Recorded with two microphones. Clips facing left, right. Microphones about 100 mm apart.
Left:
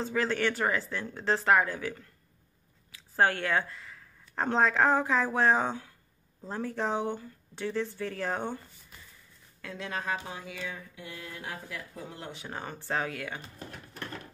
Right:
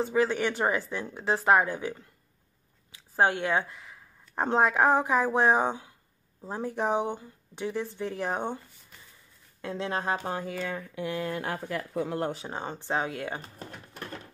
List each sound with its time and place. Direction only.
0.0 s speech: 15° right (ahead or behind)
9.6 s speech: 25° right (ahead or behind)
10.1 s music: 45° right (ahead or behind)
10.7 s speech: 65° right (ahead or behind)
12.4 s speech: 20° right (ahead or behind)